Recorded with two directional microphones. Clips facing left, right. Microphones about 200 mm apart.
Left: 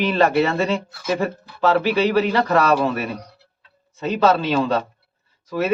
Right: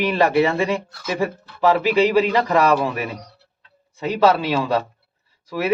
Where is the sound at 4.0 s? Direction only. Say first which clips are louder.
Right 1 dB; 10° right (ahead or behind).